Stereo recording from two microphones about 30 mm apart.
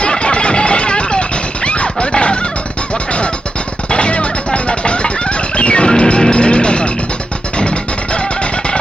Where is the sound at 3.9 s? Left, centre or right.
Left.